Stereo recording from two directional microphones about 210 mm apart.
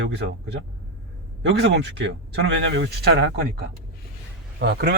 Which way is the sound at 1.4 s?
55° right (ahead or behind).